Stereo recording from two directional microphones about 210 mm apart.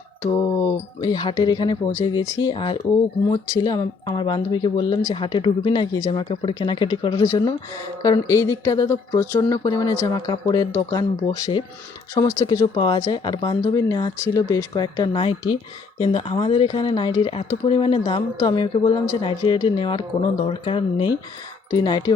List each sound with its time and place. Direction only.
1.0 s speech: 20° left (ahead or behind)